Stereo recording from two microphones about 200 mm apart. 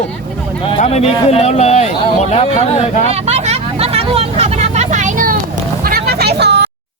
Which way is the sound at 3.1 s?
30° right (ahead or behind).